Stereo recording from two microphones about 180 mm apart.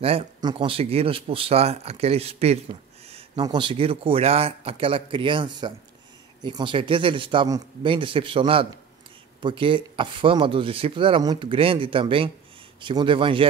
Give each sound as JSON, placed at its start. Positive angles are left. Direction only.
{"t": 0.0, "sound": "speech", "side_deg": -35}